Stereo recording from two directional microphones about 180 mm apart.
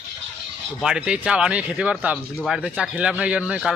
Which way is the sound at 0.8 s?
5° right (ahead or behind).